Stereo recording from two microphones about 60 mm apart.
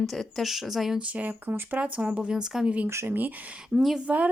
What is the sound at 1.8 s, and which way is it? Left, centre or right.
Speech, centre.